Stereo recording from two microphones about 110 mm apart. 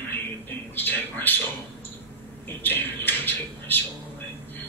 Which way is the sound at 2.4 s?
20° left (ahead or behind).